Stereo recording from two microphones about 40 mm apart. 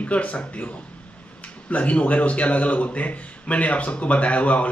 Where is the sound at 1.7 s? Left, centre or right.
Left.